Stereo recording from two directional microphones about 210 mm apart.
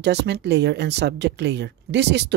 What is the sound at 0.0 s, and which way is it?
Speech, 55° right (ahead or behind).